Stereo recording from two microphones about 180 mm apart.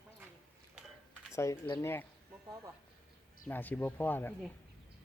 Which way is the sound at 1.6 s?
20° left (ahead or behind).